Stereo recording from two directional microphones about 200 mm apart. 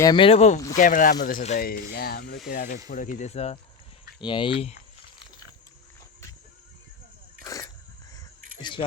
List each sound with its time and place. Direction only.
0.0 s speech: 25° left (ahead or behind)
7.4 s dog: 15° left (ahead or behind)